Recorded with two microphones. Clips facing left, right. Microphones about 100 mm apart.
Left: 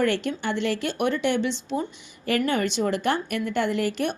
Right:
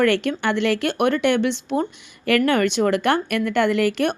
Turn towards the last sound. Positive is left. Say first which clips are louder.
# right 6 dB
turn(degrees=-70)  # may be behind; listen again after turning